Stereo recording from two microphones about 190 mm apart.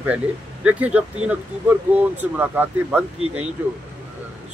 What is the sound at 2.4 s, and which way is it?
Speech, 10° right (ahead or behind).